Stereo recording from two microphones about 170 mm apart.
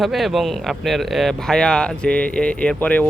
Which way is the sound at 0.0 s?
Centre (ahead or behind).